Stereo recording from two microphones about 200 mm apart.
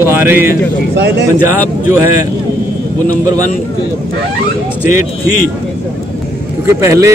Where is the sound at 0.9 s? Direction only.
60° right (ahead or behind).